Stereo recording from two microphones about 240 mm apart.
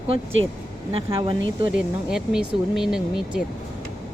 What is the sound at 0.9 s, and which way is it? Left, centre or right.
Speech, right.